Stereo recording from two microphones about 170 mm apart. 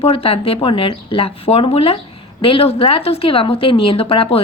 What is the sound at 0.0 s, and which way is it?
A woman's voice, 35° left (ahead or behind).